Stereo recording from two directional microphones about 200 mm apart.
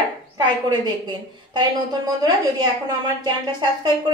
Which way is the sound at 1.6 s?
20° right (ahead or behind).